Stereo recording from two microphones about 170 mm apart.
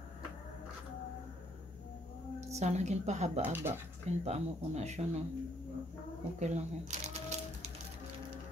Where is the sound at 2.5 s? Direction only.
40° right (ahead or behind).